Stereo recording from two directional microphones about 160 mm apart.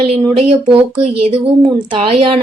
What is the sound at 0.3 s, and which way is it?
A woman's voice, 35° right (ahead or behind).